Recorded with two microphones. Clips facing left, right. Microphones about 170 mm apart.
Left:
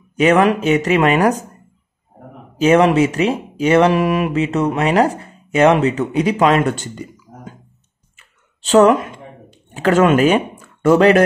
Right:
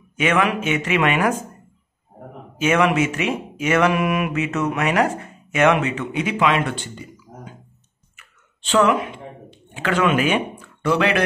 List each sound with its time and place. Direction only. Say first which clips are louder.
0.1 s speech: left 7 dB; 35° left (ahead or behind)
2.6 s speech: left 6 dB; 35° left (ahead or behind)
8.2 s a sound: right 1 dB; 40° left (ahead or behind)